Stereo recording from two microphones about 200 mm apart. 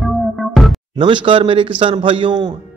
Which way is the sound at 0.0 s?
Centre (ahead or behind).